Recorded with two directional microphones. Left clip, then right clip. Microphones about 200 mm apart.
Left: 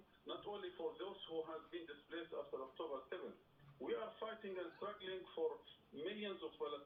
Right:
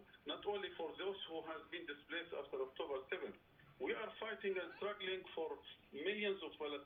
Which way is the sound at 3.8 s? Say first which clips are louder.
Right 2 dB; 25° right (ahead or behind).